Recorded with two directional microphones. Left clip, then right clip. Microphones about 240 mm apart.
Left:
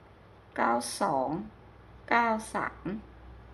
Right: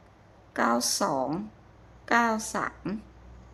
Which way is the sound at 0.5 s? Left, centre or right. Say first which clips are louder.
Right 2 dB; centre.